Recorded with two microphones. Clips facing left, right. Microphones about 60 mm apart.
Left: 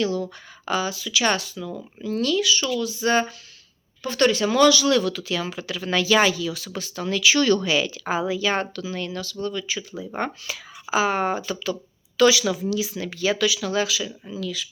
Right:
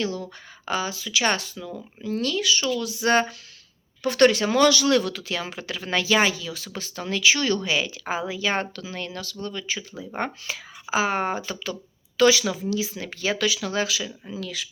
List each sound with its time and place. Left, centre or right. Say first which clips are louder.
0.0 s speech: left 4 dB; right
2.8 s speech: right 1 dB; right
7.3 s speech: left 4 dB; right
10.8 s speech: left 2 dB; right
14.3 s speech: left 3 dB; right